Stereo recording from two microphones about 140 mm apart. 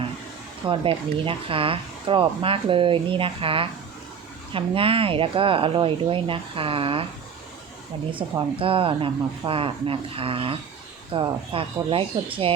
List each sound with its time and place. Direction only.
0.7 s speech: 40° right (ahead or behind)
8.1 s speech: 40° right (ahead or behind)